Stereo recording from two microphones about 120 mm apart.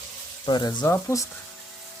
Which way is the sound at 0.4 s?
35° left (ahead or behind).